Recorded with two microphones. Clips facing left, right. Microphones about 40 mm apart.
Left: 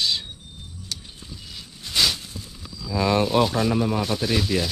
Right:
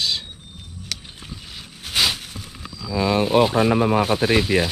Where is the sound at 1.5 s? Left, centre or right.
Right.